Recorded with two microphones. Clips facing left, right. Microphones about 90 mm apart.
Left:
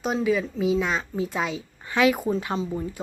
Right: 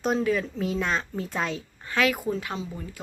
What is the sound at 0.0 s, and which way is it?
Speech, 5° left (ahead or behind).